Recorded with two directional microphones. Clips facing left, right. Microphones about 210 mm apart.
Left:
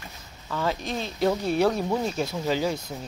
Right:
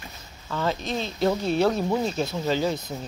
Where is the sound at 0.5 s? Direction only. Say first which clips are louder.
Right 1 dB; 5° left (ahead or behind).